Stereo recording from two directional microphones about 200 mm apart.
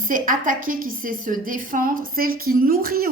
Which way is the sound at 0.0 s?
45° right (ahead or behind).